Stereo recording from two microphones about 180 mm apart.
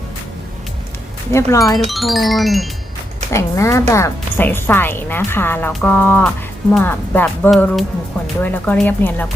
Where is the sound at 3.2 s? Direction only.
15° left (ahead or behind).